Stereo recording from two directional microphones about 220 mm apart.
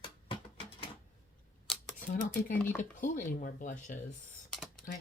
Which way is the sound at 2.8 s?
35° left (ahead or behind).